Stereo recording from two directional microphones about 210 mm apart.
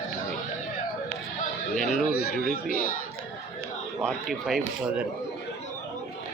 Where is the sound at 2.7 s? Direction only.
40° left (ahead or behind).